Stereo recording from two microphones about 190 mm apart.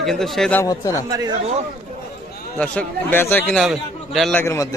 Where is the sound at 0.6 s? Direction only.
15° left (ahead or behind).